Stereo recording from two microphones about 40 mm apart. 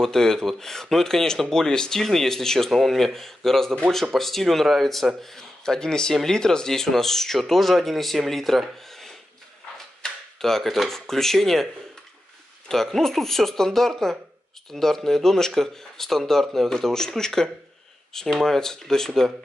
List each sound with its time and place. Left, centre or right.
0.0 s speech: centre
10.0 s a sound: centre
10.9 s speech: centre
12.6 s speech: centre
18.3 s speech: centre